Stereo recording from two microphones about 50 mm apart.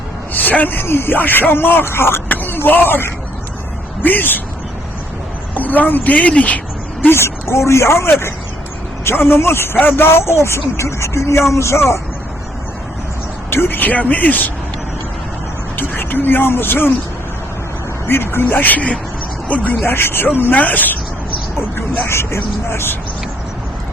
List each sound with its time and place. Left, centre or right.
0.3 s speech: left
2.3 s a sound: left
2.6 s speech: left
5.5 s speech: left
7.1 s speech: left
9.0 s speech: left
13.5 s speech: left
16.0 s speech: left
18.0 s speech: left
19.8 s speech: left
20.4 s speech: left
22.0 s speech: left